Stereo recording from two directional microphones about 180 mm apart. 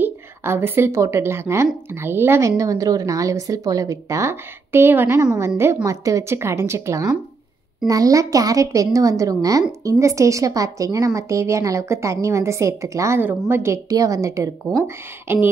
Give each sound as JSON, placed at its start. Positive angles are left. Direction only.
{"t": 0.0, "sound": "a woman's voice", "side_deg": -15}